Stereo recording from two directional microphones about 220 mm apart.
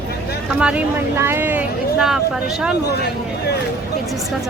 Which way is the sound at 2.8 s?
50° left (ahead or behind).